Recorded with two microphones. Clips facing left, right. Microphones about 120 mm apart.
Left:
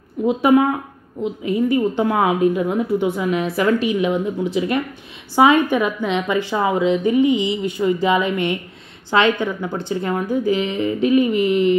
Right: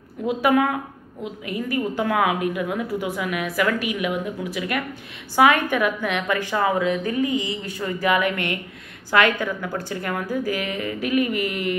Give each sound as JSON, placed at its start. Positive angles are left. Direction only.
{"t": 0.3, "sound": "a woman's voice", "side_deg": 25}